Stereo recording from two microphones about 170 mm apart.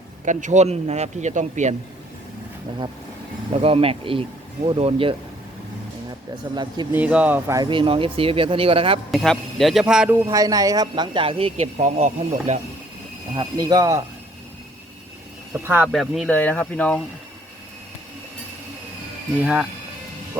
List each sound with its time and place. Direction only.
0.3 s speech: 45° right (ahead or behind)
3.6 s speech: 35° right (ahead or behind)
6.5 s speech: 25° right (ahead or behind)
6.9 s speech: 10° right (ahead or behind); by 9.0 s 35° right (ahead or behind)
9.1 s speech: centre (ahead or behind)
10.2 s speech: 20° right (ahead or behind); by 12.5 s 40° right (ahead or behind)
13.3 s speech: 25° right (ahead or behind)
15.5 s speech: 10° right (ahead or behind)
15.9 s speech: centre (ahead or behind)
16.3 s speech: 10° left (ahead or behind)